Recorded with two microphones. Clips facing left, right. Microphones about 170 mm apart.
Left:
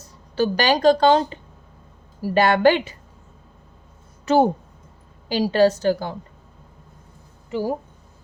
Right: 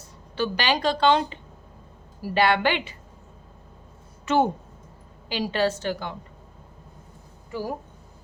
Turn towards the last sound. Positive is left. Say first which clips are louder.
# left 6 dB
turn(degrees=25)  # may be behind; listen again after turning